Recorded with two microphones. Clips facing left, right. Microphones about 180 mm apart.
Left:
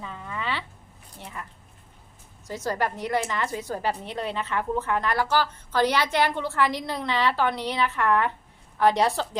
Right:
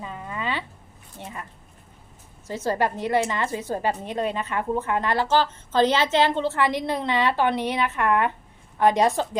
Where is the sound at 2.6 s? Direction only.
15° right (ahead or behind).